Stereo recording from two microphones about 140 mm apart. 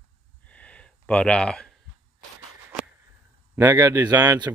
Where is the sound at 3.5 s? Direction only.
20° right (ahead or behind).